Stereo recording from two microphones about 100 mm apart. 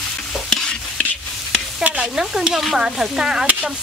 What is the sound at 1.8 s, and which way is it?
Stir, 10° right (ahead or behind).